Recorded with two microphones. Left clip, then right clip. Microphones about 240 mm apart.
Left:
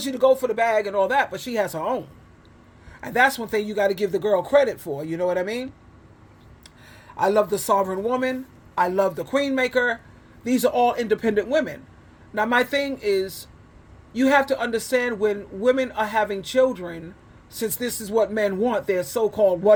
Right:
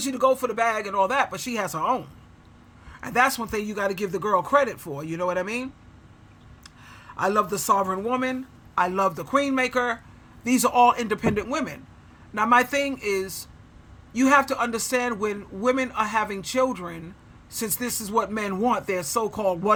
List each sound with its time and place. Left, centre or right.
0.0 s a man's voice: centre
3.0 s speech: centre
6.8 s a man's voice: centre